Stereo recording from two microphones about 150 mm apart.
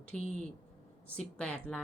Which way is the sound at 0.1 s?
5° left (ahead or behind).